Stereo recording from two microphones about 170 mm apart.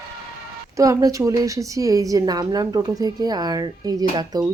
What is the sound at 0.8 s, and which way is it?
A woman's voice, 20° right (ahead or behind).